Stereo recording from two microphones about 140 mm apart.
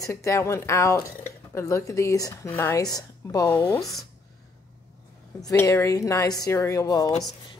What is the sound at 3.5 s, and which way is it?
Speech, 15° left (ahead or behind).